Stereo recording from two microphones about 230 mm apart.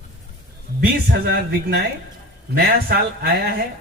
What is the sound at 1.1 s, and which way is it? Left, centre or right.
A man's voice, right.